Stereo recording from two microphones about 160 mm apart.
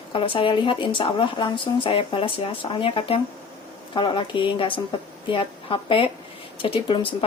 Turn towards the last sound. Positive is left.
turn(degrees=35)  # may be behind; listen again after turning